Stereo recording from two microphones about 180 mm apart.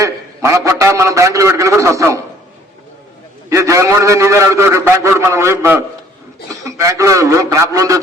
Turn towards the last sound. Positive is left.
turn(degrees=-20)  # may be behind; listen again after turning